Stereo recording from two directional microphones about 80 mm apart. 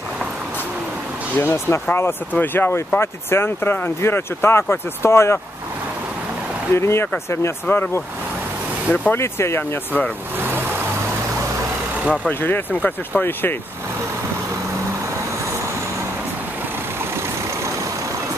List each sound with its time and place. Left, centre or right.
1.3 s speech: left
6.7 s speech: left
9.1 s speech: left
12.3 s speech: left